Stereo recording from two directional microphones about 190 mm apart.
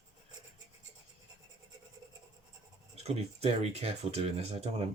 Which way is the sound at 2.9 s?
35° right (ahead or behind).